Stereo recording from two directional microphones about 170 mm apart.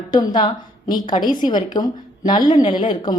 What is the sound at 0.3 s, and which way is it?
A woman's voice, 25° left (ahead or behind).